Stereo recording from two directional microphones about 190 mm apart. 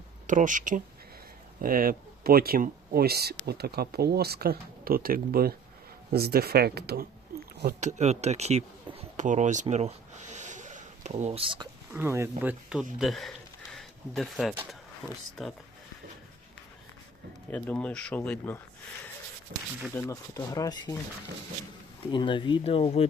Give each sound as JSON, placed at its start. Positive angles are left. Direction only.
{"t": 0.3, "sound": "speech", "side_deg": -40}
{"t": 7.8, "sound": "speech", "side_deg": -40}
{"t": 11.9, "sound": "speech", "side_deg": -15}
{"t": 17.5, "sound": "speech", "side_deg": 5}
{"t": 19.5, "sound": "speech", "side_deg": -55}
{"t": 20.0, "sound": "speech", "side_deg": 15}
{"t": 22.1, "sound": "speech", "side_deg": 25}